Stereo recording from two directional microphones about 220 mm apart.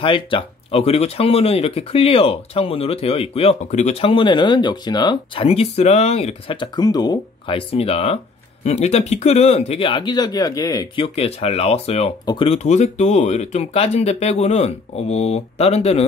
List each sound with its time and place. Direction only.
0.0 s speech: 25° left (ahead or behind)